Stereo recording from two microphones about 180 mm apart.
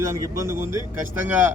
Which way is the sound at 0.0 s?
15° right (ahead or behind).